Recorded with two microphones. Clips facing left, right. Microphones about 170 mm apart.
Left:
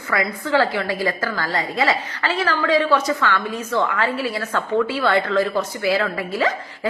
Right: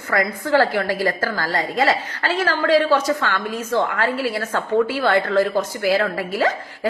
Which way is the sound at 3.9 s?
45° right (ahead or behind).